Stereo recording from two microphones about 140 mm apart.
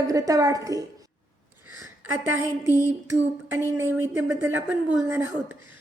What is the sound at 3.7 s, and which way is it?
Speech, 15° right (ahead or behind).